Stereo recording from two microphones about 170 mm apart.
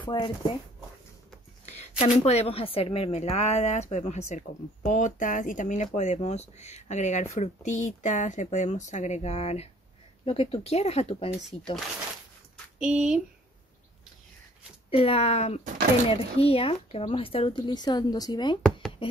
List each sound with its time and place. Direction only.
0.0 s speech: 30° left (ahead or behind)
1.7 s a woman's voice: 40° left (ahead or behind)
12.7 s speech: 5° right (ahead or behind)
14.9 s a woman's voice: 35° left (ahead or behind)